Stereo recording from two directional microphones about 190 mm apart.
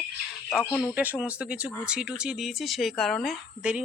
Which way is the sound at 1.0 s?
10° right (ahead or behind).